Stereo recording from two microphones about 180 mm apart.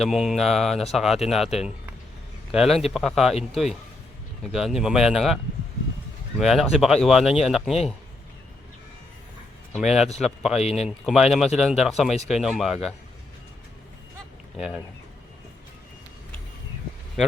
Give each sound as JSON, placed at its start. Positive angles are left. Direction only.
{"t": 0.0, "sound": "speech", "side_deg": 0}
{"t": 2.5, "sound": "speech", "side_deg": 0}
{"t": 6.4, "sound": "speech", "side_deg": 0}
{"t": 9.7, "sound": "speech", "side_deg": 0}
{"t": 10.6, "sound": "speech", "side_deg": 35}
{"t": 10.8, "sound": "speech", "side_deg": 0}
{"t": 14.5, "sound": "speech", "side_deg": 0}